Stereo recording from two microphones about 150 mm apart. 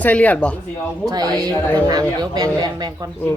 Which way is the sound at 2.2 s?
25° right (ahead or behind).